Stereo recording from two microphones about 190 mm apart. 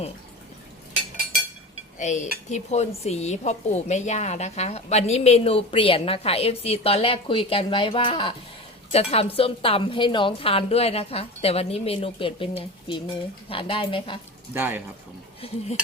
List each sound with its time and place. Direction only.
2.0 s a woman's voice: 40° left (ahead or behind)
14.5 s speech: 10° right (ahead or behind)